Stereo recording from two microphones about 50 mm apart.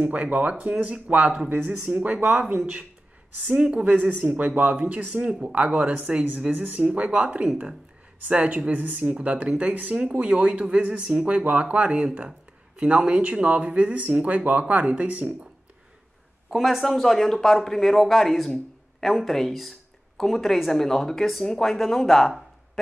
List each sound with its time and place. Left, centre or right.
0.0 s speech: right
3.7 s speech: right
4.2 s speech: right
7.4 s speech: centre
12.3 s speech: centre
16.4 s speech: centre